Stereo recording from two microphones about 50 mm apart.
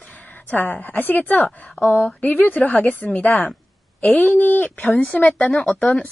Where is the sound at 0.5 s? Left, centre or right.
Left.